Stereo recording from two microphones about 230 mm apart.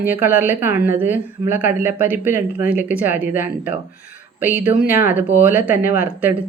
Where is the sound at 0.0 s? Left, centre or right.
Centre.